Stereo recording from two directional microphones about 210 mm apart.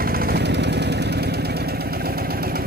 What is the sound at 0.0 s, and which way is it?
Vehicle, 45° right (ahead or behind).